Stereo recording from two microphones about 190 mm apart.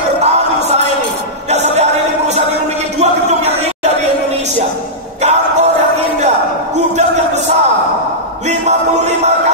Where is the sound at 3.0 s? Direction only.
35° right (ahead or behind).